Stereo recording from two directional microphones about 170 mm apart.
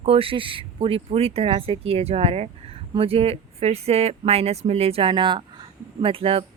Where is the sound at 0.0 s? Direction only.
35° right (ahead or behind).